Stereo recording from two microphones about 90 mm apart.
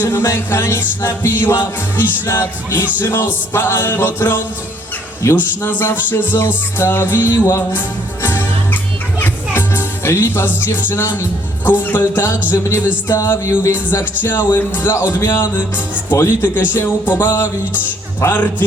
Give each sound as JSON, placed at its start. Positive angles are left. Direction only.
{"t": 0.0, "sound": "music", "side_deg": 30}
{"t": 12.5, "sound": "speech", "side_deg": 35}